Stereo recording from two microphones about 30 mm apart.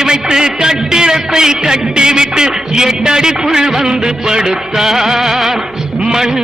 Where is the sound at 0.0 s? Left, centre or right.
Right.